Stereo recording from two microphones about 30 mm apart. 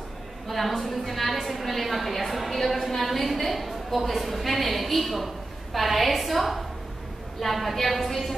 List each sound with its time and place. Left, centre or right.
0.5 s a woman's voice: centre